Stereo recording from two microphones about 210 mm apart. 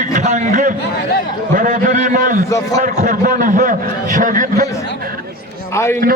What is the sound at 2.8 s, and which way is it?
A man's voice, 40° right (ahead or behind).